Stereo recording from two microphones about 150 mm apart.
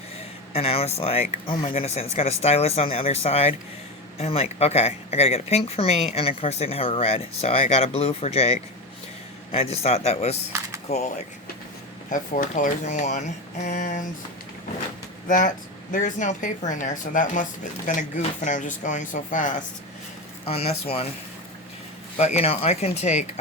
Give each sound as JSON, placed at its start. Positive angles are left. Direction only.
{"t": 0.5, "sound": "speech", "side_deg": 40}
{"t": 12.1, "sound": "speech", "side_deg": 60}
{"t": 15.3, "sound": "speech", "side_deg": 60}
{"t": 20.5, "sound": "speech", "side_deg": 45}
{"t": 22.2, "sound": "speech", "side_deg": 45}